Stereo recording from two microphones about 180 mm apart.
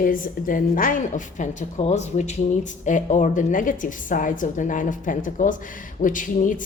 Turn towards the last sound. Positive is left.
turn(degrees=45)  # may be behind; listen again after turning